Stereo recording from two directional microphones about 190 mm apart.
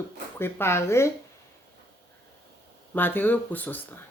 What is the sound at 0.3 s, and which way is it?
Speech, 10° left (ahead or behind).